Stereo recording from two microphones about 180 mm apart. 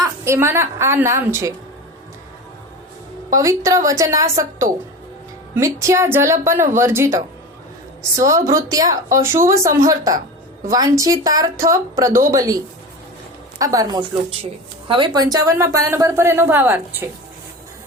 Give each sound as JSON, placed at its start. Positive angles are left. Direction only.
{"t": 0.0, "sound": "a woman's voice", "side_deg": -15}
{"t": 3.3, "sound": "speech", "side_deg": -20}
{"t": 5.5, "sound": "a woman's voice", "side_deg": -15}